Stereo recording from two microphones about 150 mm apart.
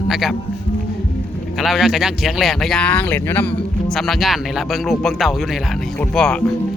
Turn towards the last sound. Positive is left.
turn(degrees=5)  # may be behind; listen again after turning